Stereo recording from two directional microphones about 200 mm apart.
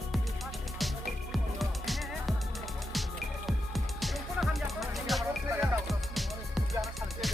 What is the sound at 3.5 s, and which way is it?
Music, centre (ahead or behind).